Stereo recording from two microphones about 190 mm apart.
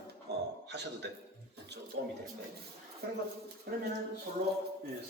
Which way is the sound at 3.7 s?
55° right (ahead or behind).